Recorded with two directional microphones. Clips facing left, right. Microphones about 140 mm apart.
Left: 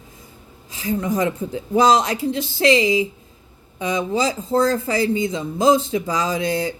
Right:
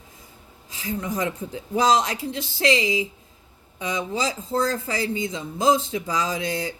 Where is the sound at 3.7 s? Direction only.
45° left (ahead or behind).